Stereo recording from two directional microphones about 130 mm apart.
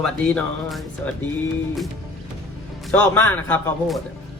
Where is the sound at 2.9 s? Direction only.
15° left (ahead or behind).